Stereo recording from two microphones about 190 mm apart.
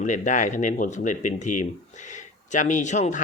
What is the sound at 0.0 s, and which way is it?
Speech, 40° left (ahead or behind).